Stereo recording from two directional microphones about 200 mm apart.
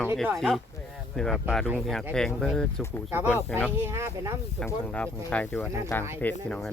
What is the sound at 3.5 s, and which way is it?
Speech, 5° left (ahead or behind).